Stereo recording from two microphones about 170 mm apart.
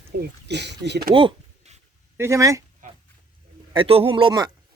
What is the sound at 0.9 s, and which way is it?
Speech, 75° right (ahead or behind).